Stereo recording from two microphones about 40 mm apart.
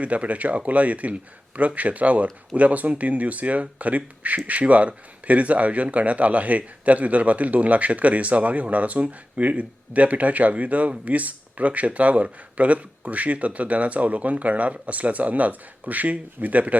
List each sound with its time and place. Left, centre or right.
0.0 s speech: right